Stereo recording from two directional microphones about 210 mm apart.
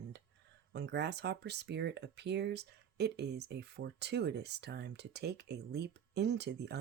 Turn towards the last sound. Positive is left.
turn(degrees=-55)  # may be behind; listen again after turning